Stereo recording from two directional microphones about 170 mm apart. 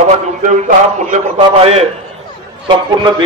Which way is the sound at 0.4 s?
45° right (ahead or behind).